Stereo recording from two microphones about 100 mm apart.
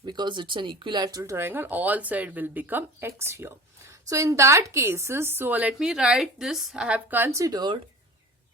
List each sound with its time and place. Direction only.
0.0 s speech: 50° right (ahead or behind)
1.2 s speech: 25° right (ahead or behind); by 6.8 s 5° right (ahead or behind)
6.8 s speech: 15° right (ahead or behind); by 7.6 s 30° right (ahead or behind)